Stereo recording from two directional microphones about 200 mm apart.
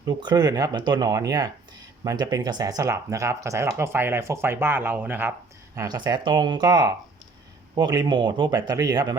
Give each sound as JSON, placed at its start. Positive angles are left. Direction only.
{"t": 0.0, "sound": "speech", "side_deg": -20}